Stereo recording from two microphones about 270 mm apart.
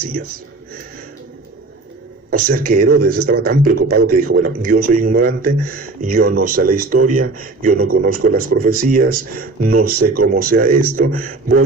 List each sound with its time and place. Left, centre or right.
2.4 s a man's voice: right